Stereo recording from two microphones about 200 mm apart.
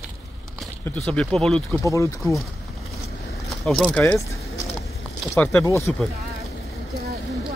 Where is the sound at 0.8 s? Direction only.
5° left (ahead or behind).